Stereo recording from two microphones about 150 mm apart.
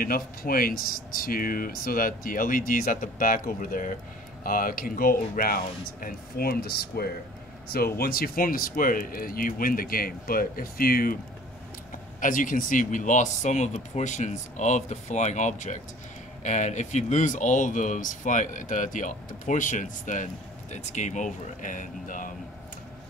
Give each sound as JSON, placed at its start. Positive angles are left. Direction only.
{"t": 0.0, "sound": "speech", "side_deg": 75}
{"t": 12.2, "sound": "speech", "side_deg": 65}